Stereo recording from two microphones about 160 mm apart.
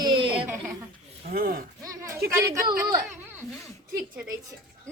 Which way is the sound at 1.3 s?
65° right (ahead or behind).